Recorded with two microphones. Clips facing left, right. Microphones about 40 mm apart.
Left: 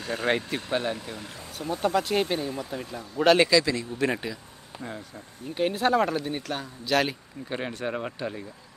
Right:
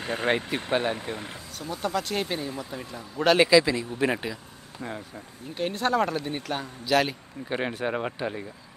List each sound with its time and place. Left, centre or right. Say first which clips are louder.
0.0 s speech: right 1 dB; right
1.7 s speech: left 4 dB; left
2.0 s speech: left 3 dB; centre
3.4 s speech: right 3 dB; centre
4.8 s speech: right 2 dB; right
5.5 s speech: left 2 dB; centre
7.4 s speech: right 3 dB; centre